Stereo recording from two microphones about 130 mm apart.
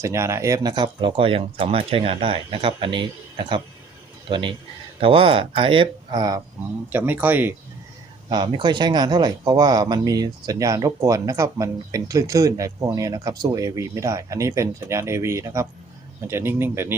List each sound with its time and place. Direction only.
0.0 s speech: 20° right (ahead or behind)
6.9 s speech: 15° right (ahead or behind)
8.3 s speech: 35° right (ahead or behind); by 17.0 s 15° right (ahead or behind)